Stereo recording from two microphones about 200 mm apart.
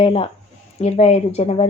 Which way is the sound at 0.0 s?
25° left (ahead or behind).